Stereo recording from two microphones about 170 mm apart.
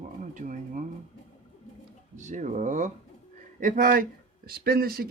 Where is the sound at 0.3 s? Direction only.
50° right (ahead or behind).